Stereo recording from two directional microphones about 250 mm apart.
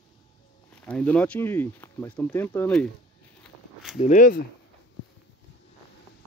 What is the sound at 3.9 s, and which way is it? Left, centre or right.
Speech, left.